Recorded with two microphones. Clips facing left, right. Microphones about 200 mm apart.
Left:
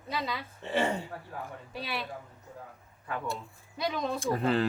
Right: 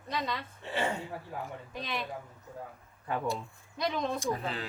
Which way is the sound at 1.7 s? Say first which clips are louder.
Left 1 dB; 5° left (ahead or behind).